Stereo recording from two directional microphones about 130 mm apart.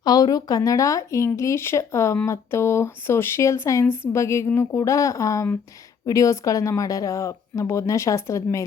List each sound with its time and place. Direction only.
0.0 s speech: 30° left (ahead or behind)